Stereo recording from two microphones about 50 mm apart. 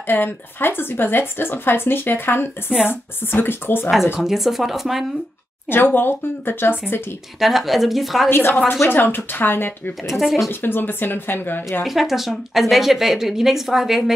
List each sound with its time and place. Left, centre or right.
0.0 s a woman's voice: left
4.2 s speech: centre
5.7 s a woman's voice: left
7.3 s speech: centre
8.3 s a woman's voice: left
10.0 s speech: centre
10.5 s a woman's voice: left
11.8 s speech: centre